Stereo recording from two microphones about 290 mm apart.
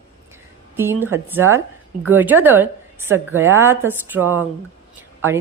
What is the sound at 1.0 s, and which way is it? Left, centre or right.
A woman's voice, centre.